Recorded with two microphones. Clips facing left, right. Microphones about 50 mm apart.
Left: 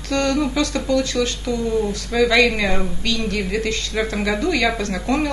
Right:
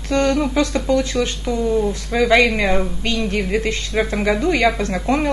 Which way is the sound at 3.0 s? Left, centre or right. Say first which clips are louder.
Right 2 dB; right.